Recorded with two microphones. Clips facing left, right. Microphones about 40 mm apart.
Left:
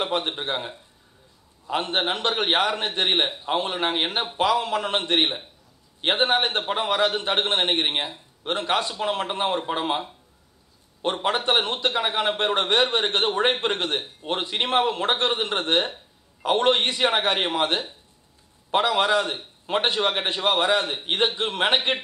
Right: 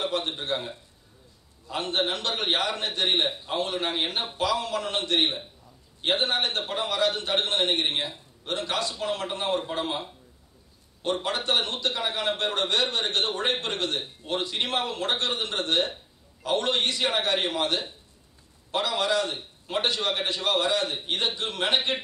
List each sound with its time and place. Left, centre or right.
0.0 s a man's voice: left
11.2 s a man's voice: left